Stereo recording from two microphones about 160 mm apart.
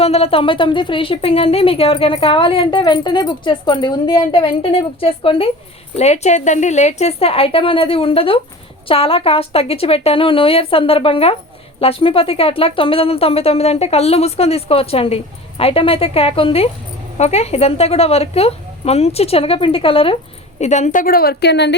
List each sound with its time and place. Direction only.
0.0 s speech: 40° left (ahead or behind)
20.6 s a woman's voice: 45° left (ahead or behind); by 21.8 s 90° left